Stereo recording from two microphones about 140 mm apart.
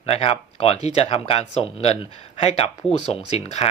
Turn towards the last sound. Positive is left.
turn(degrees=45)  # may be behind; listen again after turning